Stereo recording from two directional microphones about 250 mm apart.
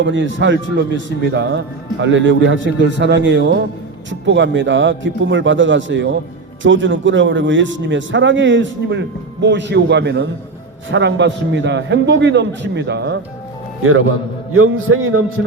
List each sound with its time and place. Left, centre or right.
0.0 s a man's voice: right
14.5 s a man's voice: right